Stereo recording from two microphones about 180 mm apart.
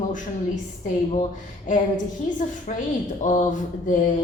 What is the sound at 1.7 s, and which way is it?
A woman's voice, 45° left (ahead or behind).